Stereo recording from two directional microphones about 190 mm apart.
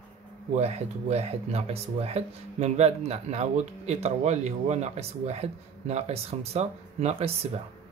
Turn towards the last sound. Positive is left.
turn(degrees=-35)  # may be behind; listen again after turning